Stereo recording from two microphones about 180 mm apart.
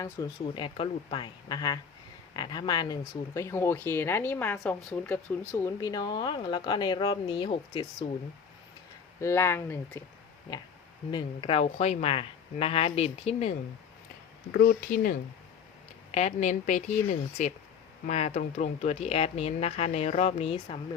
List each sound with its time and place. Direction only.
0.0 s speech: 25° left (ahead or behind)
9.2 s speech: 15° left (ahead or behind)
11.1 s speech: 25° left (ahead or behind)
14.5 s speech: 55° left (ahead or behind)
16.1 s speech: 40° left (ahead or behind)